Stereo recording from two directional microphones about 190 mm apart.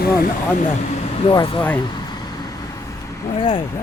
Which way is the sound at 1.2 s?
25° left (ahead or behind).